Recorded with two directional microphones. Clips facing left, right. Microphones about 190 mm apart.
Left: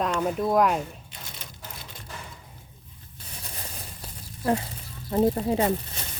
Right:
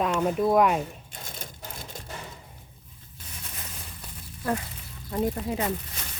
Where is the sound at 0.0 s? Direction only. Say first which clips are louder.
Right 1 dB; 5° right (ahead or behind).